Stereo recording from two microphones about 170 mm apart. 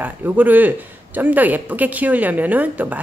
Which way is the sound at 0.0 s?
10° right (ahead or behind).